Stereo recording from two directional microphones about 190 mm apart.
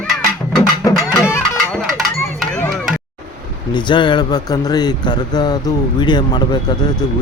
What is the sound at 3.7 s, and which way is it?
Speech, 25° left (ahead or behind).